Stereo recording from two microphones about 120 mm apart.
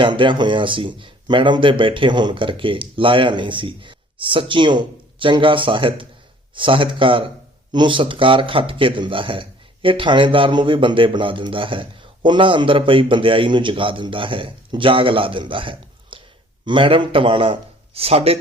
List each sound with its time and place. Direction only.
0.0 s speech: 40° right (ahead or behind)